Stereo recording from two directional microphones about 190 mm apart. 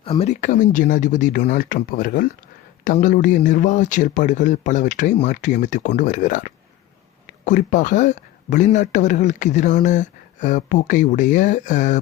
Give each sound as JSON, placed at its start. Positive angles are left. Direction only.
{"t": 0.0, "sound": "speech", "side_deg": 35}